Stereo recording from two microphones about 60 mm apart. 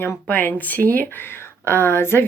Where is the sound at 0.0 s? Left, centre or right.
Left.